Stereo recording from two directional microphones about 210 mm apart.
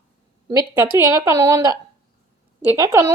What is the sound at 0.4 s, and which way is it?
A woman's voice, 15° right (ahead or behind).